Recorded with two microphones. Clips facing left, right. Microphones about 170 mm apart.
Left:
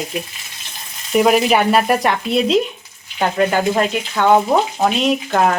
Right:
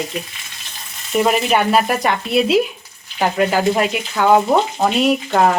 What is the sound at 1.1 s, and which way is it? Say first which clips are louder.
Frying: left 3 dB; centre (ahead or behind).